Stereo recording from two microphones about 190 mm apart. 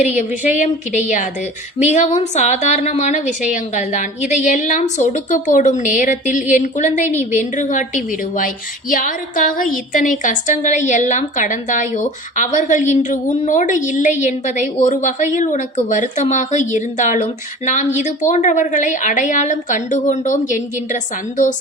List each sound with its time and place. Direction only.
0.2 s a woman's voice: 40° left (ahead or behind)